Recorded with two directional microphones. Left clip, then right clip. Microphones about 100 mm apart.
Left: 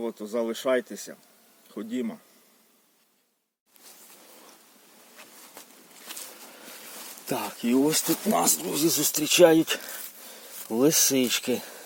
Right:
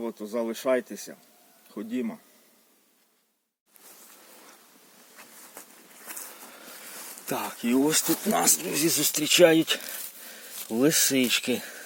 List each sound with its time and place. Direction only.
0.0 s speech: 10° left (ahead or behind)
5.1 s insect: centre (ahead or behind)
6.7 s a sound: centre (ahead or behind)
7.0 s rain: 5° left (ahead or behind)
7.3 s speech: 50° left (ahead or behind)
7.9 s speech: 35° left (ahead or behind)